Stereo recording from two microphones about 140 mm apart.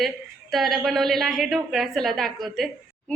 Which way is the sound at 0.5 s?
Centre (ahead or behind).